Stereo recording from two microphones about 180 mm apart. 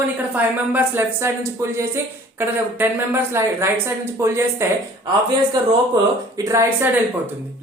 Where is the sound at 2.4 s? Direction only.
10° right (ahead or behind).